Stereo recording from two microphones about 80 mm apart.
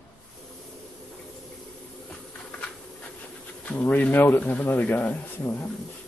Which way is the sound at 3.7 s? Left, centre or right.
Centre.